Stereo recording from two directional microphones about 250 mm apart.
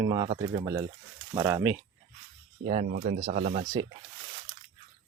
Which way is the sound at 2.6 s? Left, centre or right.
Right.